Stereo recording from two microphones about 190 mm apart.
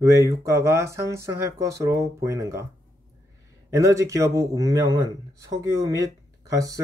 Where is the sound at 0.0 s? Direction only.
15° right (ahead or behind).